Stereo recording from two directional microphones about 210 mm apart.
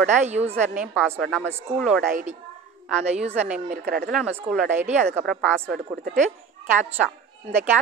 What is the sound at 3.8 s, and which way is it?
Speech, 50° right (ahead or behind).